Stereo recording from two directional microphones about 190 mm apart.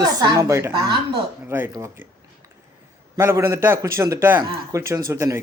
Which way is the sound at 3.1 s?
15° right (ahead or behind).